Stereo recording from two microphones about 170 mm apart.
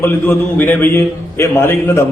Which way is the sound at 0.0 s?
10° left (ahead or behind).